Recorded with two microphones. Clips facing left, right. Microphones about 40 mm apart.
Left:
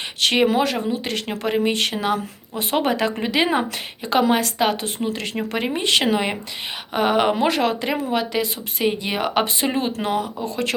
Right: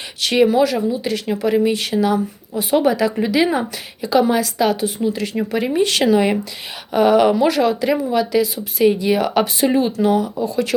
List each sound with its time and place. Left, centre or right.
0.4 s speech: left
3.2 s speech: left
4.3 s speech: left
4.5 s speech: left
4.9 s speech: left
5.6 s speech: left